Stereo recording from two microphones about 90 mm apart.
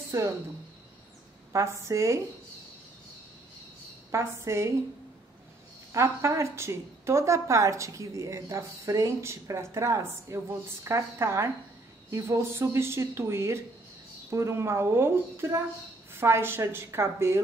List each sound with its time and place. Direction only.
0.1 s a woman's voice: 35° right (ahead or behind)
1.5 s a woman's voice: 35° right (ahead or behind)
4.1 s a woman's voice: 30° right (ahead or behind)
5.9 s a woman's voice: 35° right (ahead or behind)